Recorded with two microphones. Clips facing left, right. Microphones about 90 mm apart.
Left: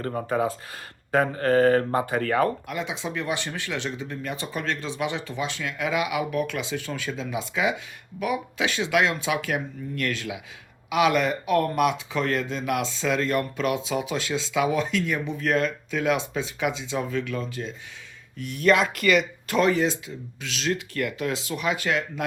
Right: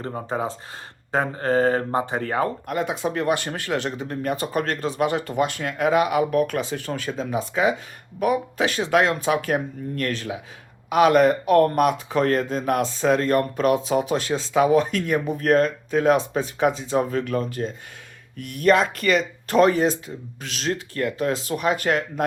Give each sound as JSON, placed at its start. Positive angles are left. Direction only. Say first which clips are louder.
{"t": 0.3, "sound": "speech", "louder": "left 2 dB", "side_deg": -25}
{"t": 2.6, "sound": "speech", "louder": "right 6 dB", "side_deg": -45}